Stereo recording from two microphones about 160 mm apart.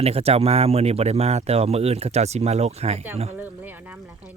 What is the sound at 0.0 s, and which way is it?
Speech, 40° right (ahead or behind).